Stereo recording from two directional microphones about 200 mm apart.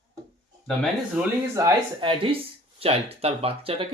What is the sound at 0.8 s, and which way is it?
Speech, 5° right (ahead or behind).